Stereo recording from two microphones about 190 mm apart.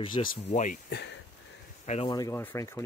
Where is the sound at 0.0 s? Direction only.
25° left (ahead or behind).